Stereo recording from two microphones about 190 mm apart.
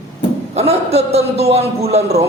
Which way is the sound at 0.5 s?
30° right (ahead or behind).